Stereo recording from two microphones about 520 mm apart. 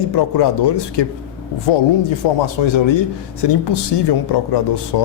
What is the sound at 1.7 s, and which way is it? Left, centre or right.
Speech, left.